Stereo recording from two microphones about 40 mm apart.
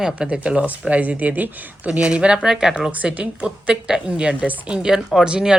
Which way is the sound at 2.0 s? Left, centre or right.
Right.